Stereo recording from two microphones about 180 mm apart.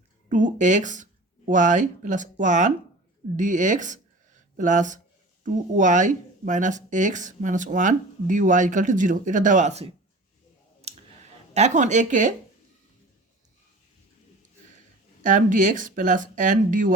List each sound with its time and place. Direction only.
0.3 s speech: 45° right (ahead or behind)
10.8 s clicking: 35° right (ahead or behind)
11.5 s speech: 40° right (ahead or behind)
15.2 s speech: 45° right (ahead or behind)